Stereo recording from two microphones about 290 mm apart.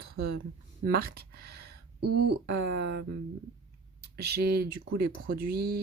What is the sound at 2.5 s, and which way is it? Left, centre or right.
Speech, right.